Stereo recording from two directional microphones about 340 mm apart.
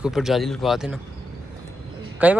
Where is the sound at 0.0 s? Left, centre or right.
Centre.